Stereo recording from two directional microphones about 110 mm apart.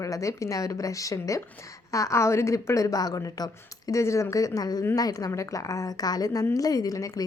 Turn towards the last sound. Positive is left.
turn(degrees=35)  # may be behind; listen again after turning